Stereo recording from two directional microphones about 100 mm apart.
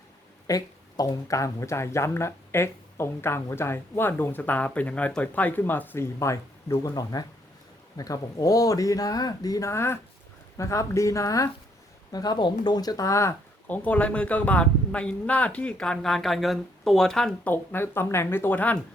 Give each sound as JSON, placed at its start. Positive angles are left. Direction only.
{"t": 0.4, "sound": "speech", "side_deg": 35}
{"t": 13.7, "sound": "speech", "side_deg": 15}
{"t": 17.4, "sound": "speech", "side_deg": 20}